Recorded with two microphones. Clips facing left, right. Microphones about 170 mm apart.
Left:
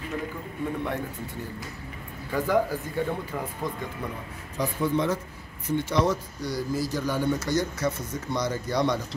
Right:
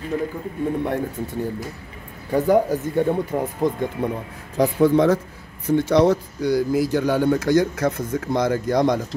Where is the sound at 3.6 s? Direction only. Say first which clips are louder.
Right 10 dB; 25° right (ahead or behind).